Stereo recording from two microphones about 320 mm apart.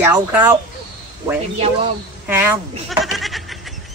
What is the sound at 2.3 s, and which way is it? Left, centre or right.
Speech, centre.